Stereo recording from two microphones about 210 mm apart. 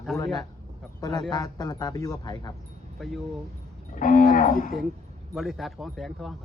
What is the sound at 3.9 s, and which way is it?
Speech, 40° left (ahead or behind).